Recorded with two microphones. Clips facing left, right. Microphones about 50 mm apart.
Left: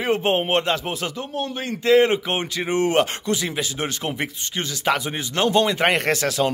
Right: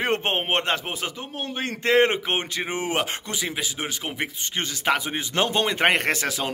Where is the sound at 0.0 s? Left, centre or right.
Right.